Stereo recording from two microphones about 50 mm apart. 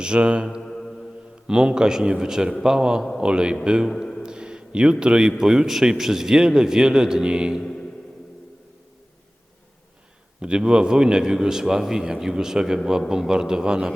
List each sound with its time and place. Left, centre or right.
0.0 s mantra: centre
0.6 s mantra: centre
1.5 s a man's voice: centre
4.2 s a sound: centre
5.4 s a man's voice: centre
7.6 s a sound: centre
10.4 s a man's voice: centre